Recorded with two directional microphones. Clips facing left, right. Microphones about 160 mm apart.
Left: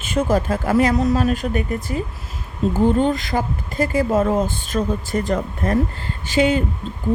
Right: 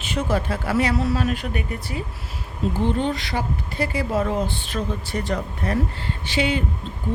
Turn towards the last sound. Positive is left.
turn(degrees=45)  # may be behind; listen again after turning